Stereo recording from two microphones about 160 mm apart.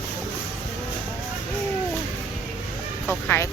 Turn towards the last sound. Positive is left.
turn(degrees=15)  # may be behind; listen again after turning